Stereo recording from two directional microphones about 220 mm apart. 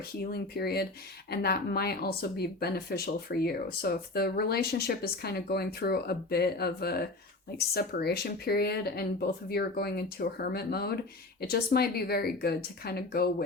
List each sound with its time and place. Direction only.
0.3 s speech: 45° left (ahead or behind)